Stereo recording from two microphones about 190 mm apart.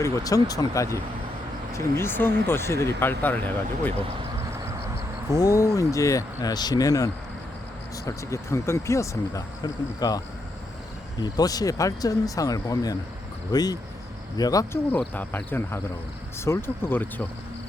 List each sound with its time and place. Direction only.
0.0 s speech: 20° left (ahead or behind)
5.3 s speech: 20° left (ahead or behind)